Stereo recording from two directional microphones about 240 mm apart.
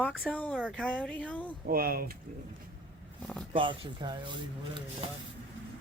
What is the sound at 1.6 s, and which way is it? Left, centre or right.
Speech, right.